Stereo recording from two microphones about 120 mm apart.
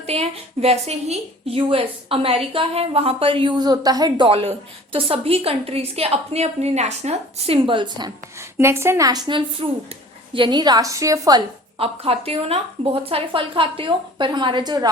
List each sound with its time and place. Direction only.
0.0 s a woman's voice: 60° right (ahead or behind); by 4.3 s 35° right (ahead or behind)
4.3 s a woman's voice: 50° right (ahead or behind)
8.4 s a woman's voice: 20° right (ahead or behind)
11.8 s a woman's voice: 55° right (ahead or behind); by 14.8 s 35° right (ahead or behind)